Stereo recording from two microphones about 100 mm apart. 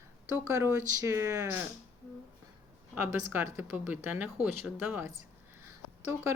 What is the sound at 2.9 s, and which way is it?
Speech, 20° right (ahead or behind).